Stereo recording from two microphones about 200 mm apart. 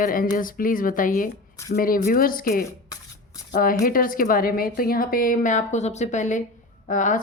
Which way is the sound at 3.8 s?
45° left (ahead or behind).